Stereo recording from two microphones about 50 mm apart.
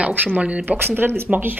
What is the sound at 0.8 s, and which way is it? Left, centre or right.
Speech, right.